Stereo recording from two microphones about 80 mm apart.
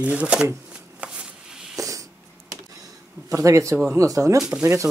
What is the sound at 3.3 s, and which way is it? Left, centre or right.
Speech, right.